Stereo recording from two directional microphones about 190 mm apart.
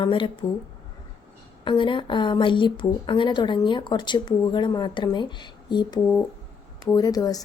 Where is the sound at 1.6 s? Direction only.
25° left (ahead or behind).